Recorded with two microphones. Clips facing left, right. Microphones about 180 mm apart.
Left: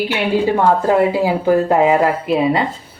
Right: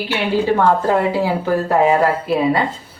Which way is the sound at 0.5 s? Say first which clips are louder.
Even; 15° left (ahead or behind).